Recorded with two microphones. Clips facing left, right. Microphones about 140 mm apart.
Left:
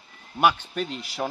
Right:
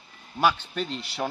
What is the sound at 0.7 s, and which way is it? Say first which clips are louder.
Speech: left 1 dB; 5° left (ahead or behind).